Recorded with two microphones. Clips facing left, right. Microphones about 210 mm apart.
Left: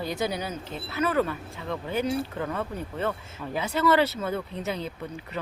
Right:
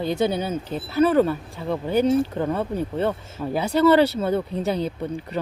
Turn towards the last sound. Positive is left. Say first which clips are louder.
# right 8 dB
turn(degrees=-35)  # may be behind; listen again after turning